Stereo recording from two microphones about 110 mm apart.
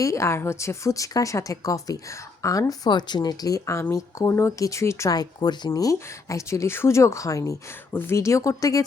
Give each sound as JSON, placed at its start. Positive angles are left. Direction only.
{"t": 0.0, "sound": "a woman's voice", "side_deg": 25}